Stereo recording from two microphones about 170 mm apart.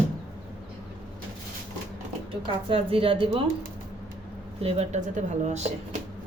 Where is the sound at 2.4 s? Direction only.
35° right (ahead or behind).